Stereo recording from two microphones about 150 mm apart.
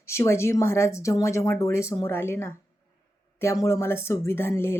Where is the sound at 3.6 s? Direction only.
15° left (ahead or behind).